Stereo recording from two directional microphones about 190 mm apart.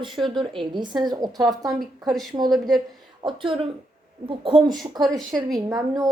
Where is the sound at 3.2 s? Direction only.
25° right (ahead or behind).